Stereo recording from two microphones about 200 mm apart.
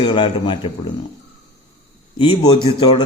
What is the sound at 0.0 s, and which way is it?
Speech, 25° left (ahead or behind).